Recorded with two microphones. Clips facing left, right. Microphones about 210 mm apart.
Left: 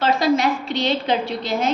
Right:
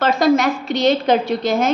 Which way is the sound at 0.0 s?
45° right (ahead or behind).